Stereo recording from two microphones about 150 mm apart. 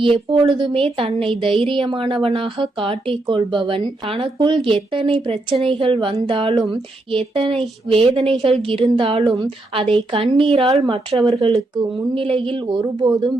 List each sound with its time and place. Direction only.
0.0 s speech: 35° right (ahead or behind)